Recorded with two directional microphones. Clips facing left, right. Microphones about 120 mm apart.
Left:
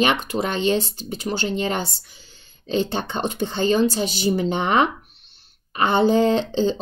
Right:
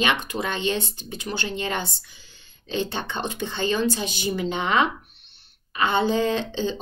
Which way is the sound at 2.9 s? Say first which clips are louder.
Left 4 dB; 40° left (ahead or behind).